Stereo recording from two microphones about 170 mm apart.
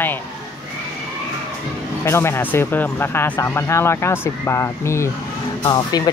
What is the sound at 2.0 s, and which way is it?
Speech, 15° left (ahead or behind).